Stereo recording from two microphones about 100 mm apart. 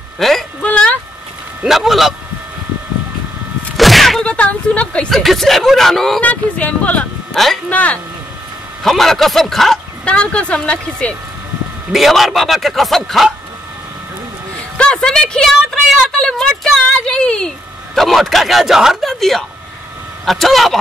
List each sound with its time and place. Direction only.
0.2 s speech: centre (ahead or behind)
0.6 s a sound: 10° left (ahead or behind)
1.6 s speech: 5° right (ahead or behind)
3.7 s a sound: centre (ahead or behind)
4.3 s a woman's voice: 10° left (ahead or behind)
5.2 s speech: centre (ahead or behind)
6.2 s speech: 15° left (ahead or behind)
7.3 s speech: 5° left (ahead or behind)
7.7 s speech: 15° left (ahead or behind)
8.8 s speech: centre (ahead or behind)
11.9 s speech: centre (ahead or behind)
14.8 s speech: 10° left (ahead or behind)